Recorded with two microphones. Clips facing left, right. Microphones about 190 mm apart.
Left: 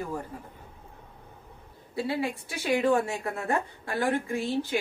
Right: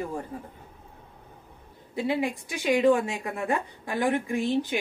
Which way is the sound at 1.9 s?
20° right (ahead or behind).